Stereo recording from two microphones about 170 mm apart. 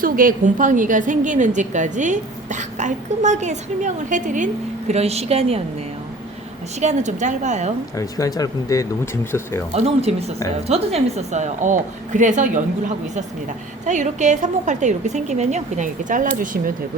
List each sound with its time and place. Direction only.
0.0 s a woman's voice: 55° right (ahead or behind); by 5.6 s 35° right (ahead or behind)
6.7 s a woman's voice: 45° right (ahead or behind)
7.9 s speech: 20° left (ahead or behind)
9.7 s a woman's voice: 35° right (ahead or behind)
13.8 s a woman's voice: 45° right (ahead or behind)